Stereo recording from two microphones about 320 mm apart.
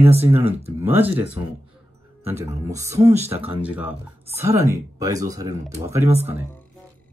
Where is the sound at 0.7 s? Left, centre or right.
Centre.